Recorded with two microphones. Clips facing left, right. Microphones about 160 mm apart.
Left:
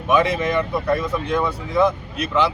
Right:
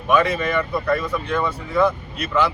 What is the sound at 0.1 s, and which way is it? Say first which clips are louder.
Speech: even; 20° left (ahead or behind).